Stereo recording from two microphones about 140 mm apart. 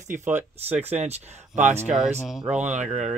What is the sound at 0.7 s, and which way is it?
Speech, 10° right (ahead or behind).